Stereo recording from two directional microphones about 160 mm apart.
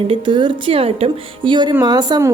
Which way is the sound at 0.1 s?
30° right (ahead or behind).